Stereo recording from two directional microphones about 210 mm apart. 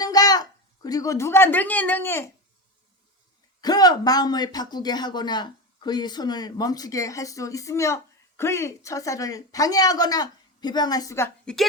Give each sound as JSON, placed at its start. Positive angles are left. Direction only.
{"t": 0.0, "sound": "a child's voice", "side_deg": 20}
{"t": 3.6, "sound": "speech", "side_deg": 20}